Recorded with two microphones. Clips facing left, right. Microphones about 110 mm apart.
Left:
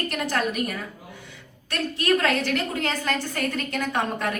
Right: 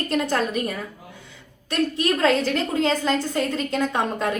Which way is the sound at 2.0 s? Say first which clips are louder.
Right 1 dB; 30° right (ahead or behind).